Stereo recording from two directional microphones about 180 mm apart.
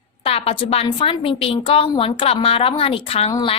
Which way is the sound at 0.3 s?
30° left (ahead or behind).